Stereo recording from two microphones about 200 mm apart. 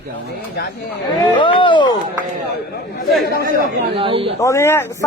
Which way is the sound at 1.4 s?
25° left (ahead or behind).